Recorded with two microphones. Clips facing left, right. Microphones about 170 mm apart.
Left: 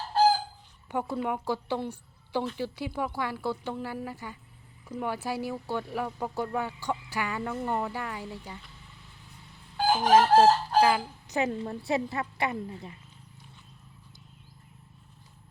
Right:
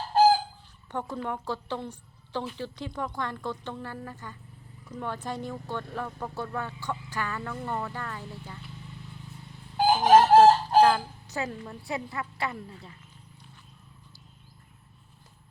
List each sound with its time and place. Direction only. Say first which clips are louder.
0.9 s a woman's voice: left 3 dB; 10° left (ahead or behind)
9.7 s chicken: right 3 dB; 20° right (ahead or behind)
10.8 s a woman's voice: right 3 dB; 10° left (ahead or behind)